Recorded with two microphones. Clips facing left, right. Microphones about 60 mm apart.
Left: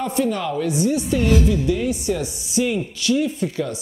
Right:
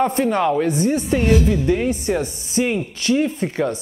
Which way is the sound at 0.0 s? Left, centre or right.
Right.